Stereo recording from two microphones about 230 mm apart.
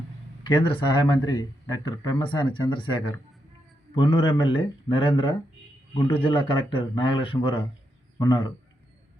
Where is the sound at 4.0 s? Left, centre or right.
Left.